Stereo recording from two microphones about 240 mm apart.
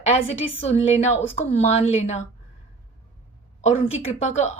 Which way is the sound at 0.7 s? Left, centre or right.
Left.